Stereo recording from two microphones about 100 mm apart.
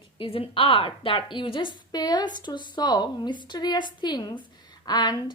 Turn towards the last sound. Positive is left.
turn(degrees=45)  # may be behind; listen again after turning